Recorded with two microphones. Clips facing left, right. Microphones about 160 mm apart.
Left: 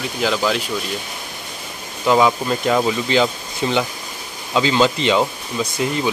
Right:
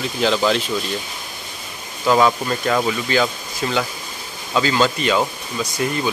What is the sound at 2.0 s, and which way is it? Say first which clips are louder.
Speech: left 1 dB; 10° left (ahead or behind).